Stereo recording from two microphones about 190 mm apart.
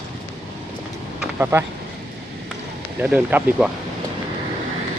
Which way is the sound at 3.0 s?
10° right (ahead or behind).